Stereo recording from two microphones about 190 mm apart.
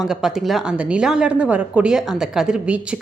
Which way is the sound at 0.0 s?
Centre (ahead or behind).